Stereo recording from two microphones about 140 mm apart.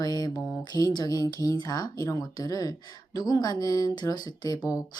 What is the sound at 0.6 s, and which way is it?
Speech, 30° left (ahead or behind).